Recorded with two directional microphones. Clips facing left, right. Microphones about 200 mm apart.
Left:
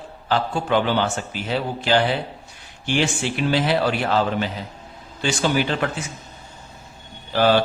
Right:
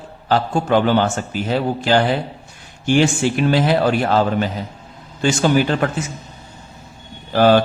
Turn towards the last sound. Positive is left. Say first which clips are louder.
# right 4 dB
turn(degrees=-45)  # may be behind; listen again after turning